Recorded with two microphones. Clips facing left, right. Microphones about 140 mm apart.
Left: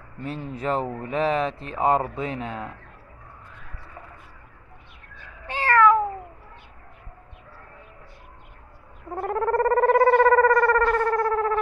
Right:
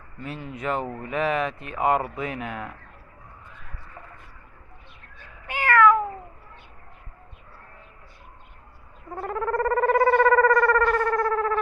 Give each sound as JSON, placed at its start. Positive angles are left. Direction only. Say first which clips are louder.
{"t": 0.2, "sound": "speech", "louder": "left 2 dB", "side_deg": 35}
{"t": 5.5, "sound": "cat", "louder": "even", "side_deg": 30}
{"t": 9.3, "sound": "a sound", "louder": "left 3 dB", "side_deg": 35}